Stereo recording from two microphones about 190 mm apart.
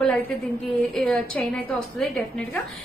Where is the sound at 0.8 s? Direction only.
5° left (ahead or behind).